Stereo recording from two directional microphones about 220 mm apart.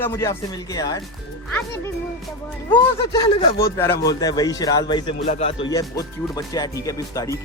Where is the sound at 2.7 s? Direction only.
15° left (ahead or behind).